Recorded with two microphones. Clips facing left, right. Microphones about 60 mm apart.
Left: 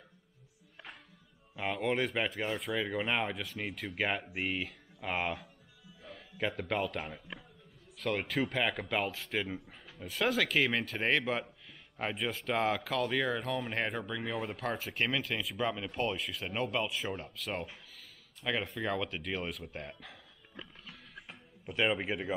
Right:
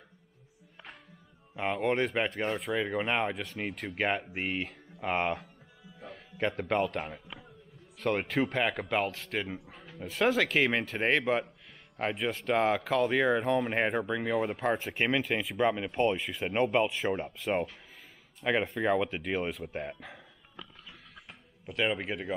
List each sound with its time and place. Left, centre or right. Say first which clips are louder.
1.6 s a man's voice: right 3 dB; centre
21.1 s music: left 1 dB; centre